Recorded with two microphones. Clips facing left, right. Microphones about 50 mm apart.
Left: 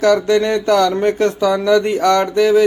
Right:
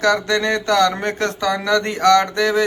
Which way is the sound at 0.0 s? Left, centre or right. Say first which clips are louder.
Left 4 dB; right.